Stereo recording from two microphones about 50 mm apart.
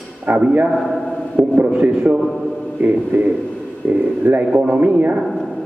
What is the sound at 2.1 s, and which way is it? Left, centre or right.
A man's voice, right.